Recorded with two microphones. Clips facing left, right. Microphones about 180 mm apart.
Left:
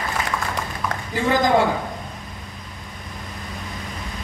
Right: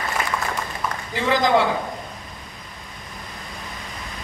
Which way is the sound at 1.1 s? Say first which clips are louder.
Left 1 dB; 45° left (ahead or behind).